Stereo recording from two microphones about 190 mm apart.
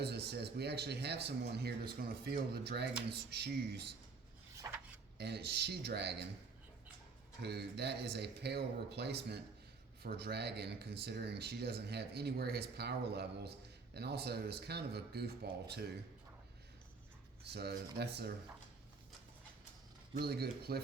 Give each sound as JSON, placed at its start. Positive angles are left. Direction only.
{"t": 0.0, "sound": "speech", "side_deg": -60}
{"t": 5.1, "sound": "speech", "side_deg": -60}
{"t": 7.4, "sound": "speech", "side_deg": -60}
{"t": 17.4, "sound": "speech", "side_deg": -60}
{"t": 20.1, "sound": "speech", "side_deg": -55}